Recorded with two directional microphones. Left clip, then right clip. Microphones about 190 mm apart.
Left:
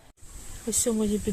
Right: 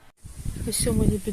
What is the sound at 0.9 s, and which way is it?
Speech, centre (ahead or behind).